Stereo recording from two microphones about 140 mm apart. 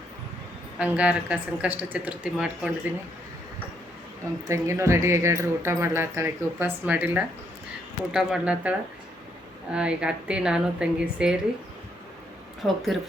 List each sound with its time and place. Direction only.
0.8 s speech: 10° right (ahead or behind)
4.4 s speech: 20° right (ahead or behind)
9.7 s speech: 5° right (ahead or behind)
12.6 s speech: centre (ahead or behind)